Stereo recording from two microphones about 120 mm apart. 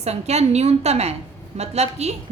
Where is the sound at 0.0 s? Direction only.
65° right (ahead or behind).